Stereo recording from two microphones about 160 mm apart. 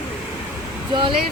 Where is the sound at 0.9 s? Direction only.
30° right (ahead or behind).